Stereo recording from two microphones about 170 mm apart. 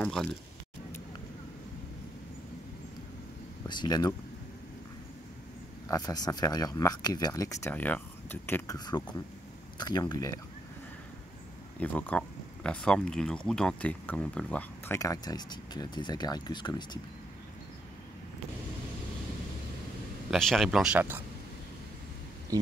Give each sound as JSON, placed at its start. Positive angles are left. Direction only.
{"t": 0.0, "sound": "speech", "side_deg": 5}
{"t": 3.6, "sound": "speech", "side_deg": 25}
{"t": 5.9, "sound": "speech", "side_deg": 20}
{"t": 8.7, "sound": "speech", "side_deg": 25}
{"t": 11.8, "sound": "speech", "side_deg": 10}
{"t": 15.0, "sound": "speech", "side_deg": 20}
{"t": 20.2, "sound": "speech", "side_deg": 0}
{"t": 22.5, "sound": "speech", "side_deg": -20}